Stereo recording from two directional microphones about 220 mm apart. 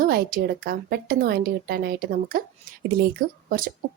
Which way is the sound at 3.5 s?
40° right (ahead or behind).